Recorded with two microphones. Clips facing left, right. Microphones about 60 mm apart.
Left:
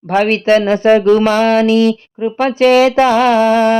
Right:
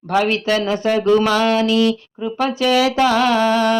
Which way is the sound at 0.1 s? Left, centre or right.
Left.